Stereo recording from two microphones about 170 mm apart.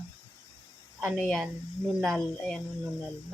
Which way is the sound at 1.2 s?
Centre (ahead or behind).